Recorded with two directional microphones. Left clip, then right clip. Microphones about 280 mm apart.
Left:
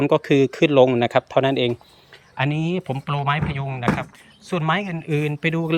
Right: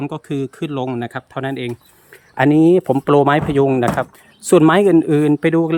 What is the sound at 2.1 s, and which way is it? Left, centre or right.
Speech, centre.